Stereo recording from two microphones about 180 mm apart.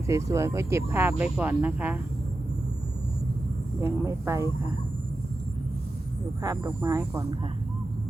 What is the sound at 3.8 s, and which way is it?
Speech, 15° right (ahead or behind).